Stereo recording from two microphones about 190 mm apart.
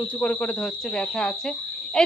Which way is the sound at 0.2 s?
5° left (ahead or behind).